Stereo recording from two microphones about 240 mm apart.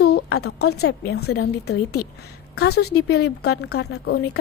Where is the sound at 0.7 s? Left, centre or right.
Left.